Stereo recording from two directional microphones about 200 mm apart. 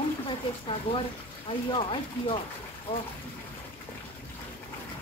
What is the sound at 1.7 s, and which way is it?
Speech, 25° left (ahead or behind).